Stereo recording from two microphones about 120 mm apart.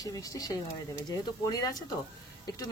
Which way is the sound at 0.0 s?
30° left (ahead or behind).